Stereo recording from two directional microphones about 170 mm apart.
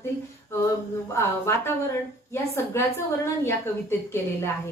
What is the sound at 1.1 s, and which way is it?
A woman's voice, 15° left (ahead or behind).